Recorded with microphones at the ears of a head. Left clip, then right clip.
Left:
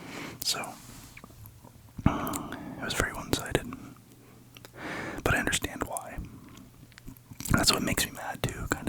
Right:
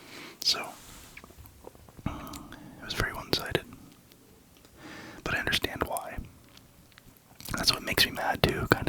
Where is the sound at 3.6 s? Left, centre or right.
Left.